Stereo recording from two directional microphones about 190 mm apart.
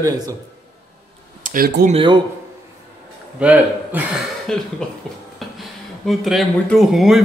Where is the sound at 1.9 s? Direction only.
30° right (ahead or behind).